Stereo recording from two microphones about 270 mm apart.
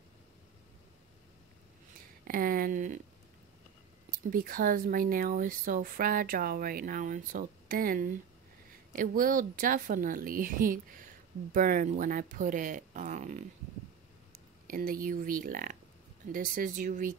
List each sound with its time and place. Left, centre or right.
2.2 s speech: right
4.3 s speech: right
14.7 s speech: right